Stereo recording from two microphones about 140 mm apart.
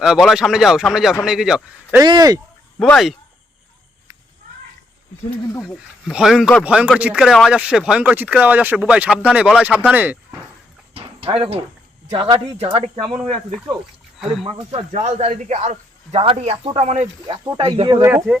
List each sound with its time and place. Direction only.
0.0 s speech: 5° right (ahead or behind)
2.0 s speech: 30° right (ahead or behind)
2.7 s speech: 10° left (ahead or behind)
5.4 s speech: 25° left (ahead or behind)
6.1 s speech: 5° right (ahead or behind)
11.3 s speech: 45° right (ahead or behind)
14.4 s speech: 40° right (ahead or behind)
17.6 s speech: 40° right (ahead or behind)